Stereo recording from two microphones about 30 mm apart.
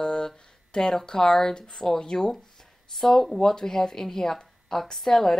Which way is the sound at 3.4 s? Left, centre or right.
Centre.